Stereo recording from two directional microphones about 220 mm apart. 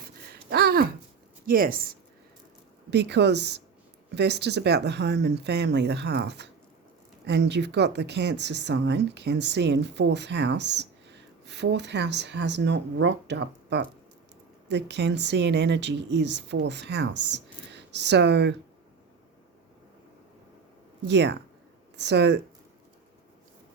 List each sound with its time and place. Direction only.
0.5 s a sound: 45° right (ahead or behind)
1.5 s speech: 40° right (ahead or behind)
2.9 s speech: 50° right (ahead or behind)
21.1 s speech: 50° right (ahead or behind)